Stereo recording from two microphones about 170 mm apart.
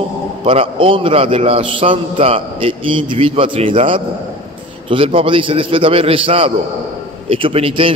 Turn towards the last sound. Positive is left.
turn(degrees=-35)  # may be behind; listen again after turning